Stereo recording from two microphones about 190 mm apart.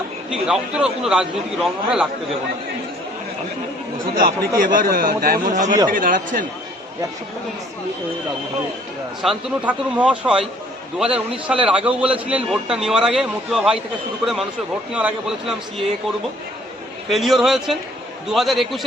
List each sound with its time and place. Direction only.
0.3 s a man's voice: 5° right (ahead or behind)
4.1 s a man's voice: 45° right (ahead or behind)
9.2 s a man's voice: 5° right (ahead or behind)
14.9 s a man's voice: 5° right (ahead or behind)
17.1 s a man's voice: centre (ahead or behind)